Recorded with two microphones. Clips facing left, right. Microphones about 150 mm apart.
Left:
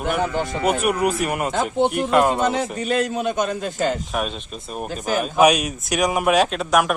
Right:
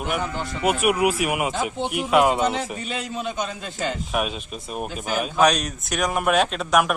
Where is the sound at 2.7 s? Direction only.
50° left (ahead or behind).